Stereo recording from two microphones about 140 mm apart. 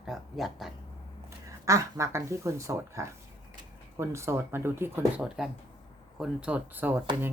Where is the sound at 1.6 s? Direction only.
20° right (ahead or behind).